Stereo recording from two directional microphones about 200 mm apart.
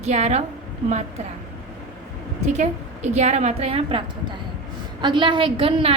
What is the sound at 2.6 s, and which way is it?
A woman's voice, 35° right (ahead or behind).